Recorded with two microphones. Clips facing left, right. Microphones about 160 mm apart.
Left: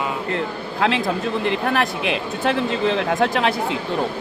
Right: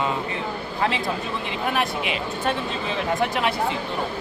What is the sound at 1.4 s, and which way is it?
Speech, 90° left.